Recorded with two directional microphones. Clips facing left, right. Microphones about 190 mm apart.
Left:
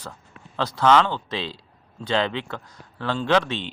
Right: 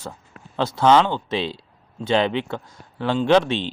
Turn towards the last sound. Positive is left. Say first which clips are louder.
# right 5 dB
turn(degrees=-30)  # may be behind; listen again after turning